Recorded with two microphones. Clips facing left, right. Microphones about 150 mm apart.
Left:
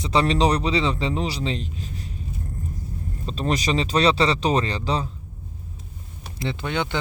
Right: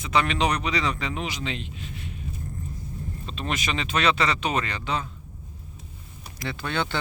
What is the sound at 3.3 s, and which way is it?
Speech, 35° left (ahead or behind).